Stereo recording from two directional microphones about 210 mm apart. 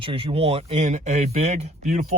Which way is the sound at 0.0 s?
25° right (ahead or behind).